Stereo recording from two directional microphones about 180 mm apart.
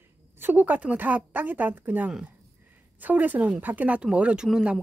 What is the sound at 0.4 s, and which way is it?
Speech, 10° right (ahead or behind).